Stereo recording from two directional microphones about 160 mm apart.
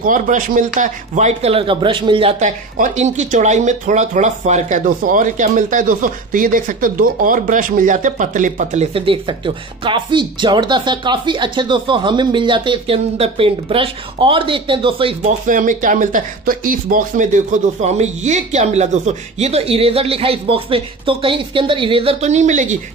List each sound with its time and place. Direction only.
0.0 s speech: 55° right (ahead or behind); by 2.3 s 30° right (ahead or behind)
2.4 s speech: 50° right (ahead or behind)
8.9 s speech: 35° right (ahead or behind)
15.4 s speech: 55° right (ahead or behind)